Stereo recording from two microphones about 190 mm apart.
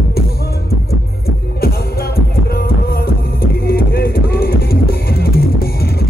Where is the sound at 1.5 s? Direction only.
55° left (ahead or behind).